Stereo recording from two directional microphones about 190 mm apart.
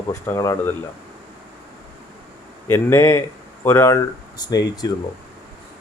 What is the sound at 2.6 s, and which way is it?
Speech, 15° left (ahead or behind).